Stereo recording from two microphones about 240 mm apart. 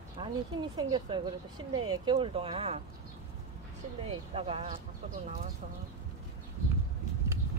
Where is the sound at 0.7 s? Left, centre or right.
Centre.